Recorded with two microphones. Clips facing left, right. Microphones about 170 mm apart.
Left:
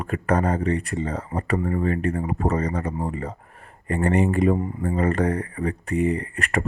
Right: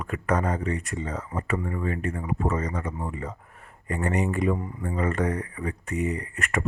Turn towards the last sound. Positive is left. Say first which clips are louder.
# left 4 dB
turn(degrees=30)  # may be behind; listen again after turning